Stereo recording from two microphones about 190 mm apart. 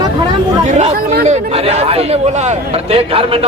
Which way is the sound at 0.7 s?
35° right (ahead or behind).